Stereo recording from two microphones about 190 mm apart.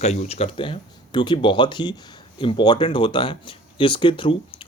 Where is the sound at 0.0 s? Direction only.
35° left (ahead or behind).